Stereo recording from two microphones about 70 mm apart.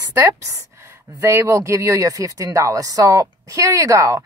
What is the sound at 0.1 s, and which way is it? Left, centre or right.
A man's voice, right.